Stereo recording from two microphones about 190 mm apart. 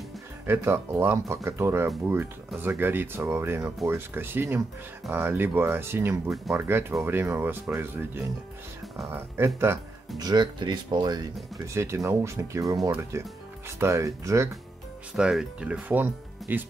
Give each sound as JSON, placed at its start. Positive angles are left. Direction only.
{"t": 0.5, "sound": "speech", "side_deg": -15}
{"t": 15.1, "sound": "speech", "side_deg": -5}